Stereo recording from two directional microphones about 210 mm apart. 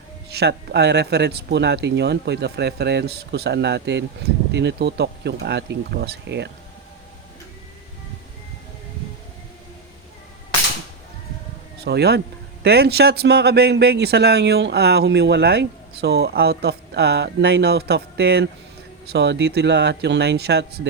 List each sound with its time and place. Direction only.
0.3 s speech: 50° right (ahead or behind)
11.9 s speech: 50° right (ahead or behind)